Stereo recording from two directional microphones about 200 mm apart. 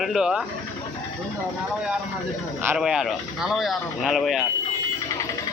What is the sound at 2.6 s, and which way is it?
Speech, 5° right (ahead or behind).